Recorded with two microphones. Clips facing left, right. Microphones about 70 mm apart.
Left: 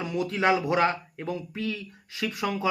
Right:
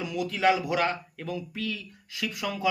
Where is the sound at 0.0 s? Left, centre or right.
Left.